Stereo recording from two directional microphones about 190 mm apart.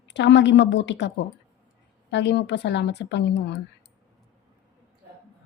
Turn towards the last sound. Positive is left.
turn(degrees=65)  # may be behind; listen again after turning